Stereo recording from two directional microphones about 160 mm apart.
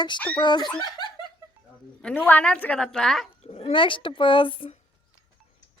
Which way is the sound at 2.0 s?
10° left (ahead or behind).